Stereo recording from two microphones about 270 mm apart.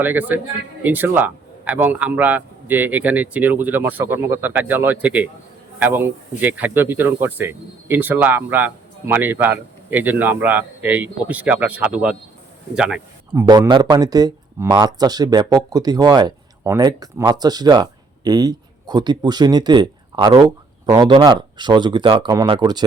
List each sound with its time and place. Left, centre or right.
0.0 s speech: centre
13.5 s speech: centre